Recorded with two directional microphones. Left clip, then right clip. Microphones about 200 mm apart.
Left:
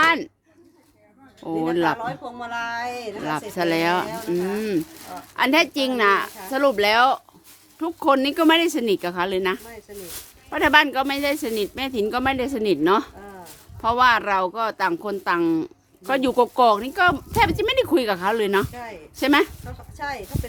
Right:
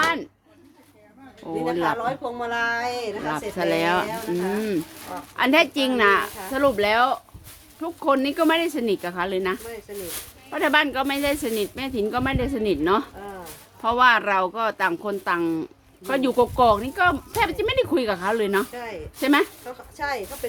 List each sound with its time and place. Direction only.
0.0 s a sound: 45° left (ahead or behind)
1.4 s speech: 45° left (ahead or behind)
2.0 s a woman's voice: centre (ahead or behind)
3.2 s a woman's voice: 35° left (ahead or behind)
6.5 s speech: 40° left (ahead or behind)
9.6 s a woman's voice: centre (ahead or behind)
10.5 s speech: 40° left (ahead or behind)
18.7 s a woman's voice: 5° right (ahead or behind)
19.2 s speech: 45° left (ahead or behind)
20.0 s a woman's voice: 5° right (ahead or behind)